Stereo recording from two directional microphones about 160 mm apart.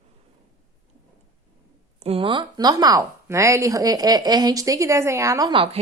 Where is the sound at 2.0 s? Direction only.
35° right (ahead or behind).